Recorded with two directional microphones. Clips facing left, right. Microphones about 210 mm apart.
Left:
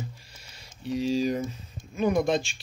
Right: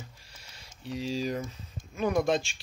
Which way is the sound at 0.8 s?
Centre (ahead or behind).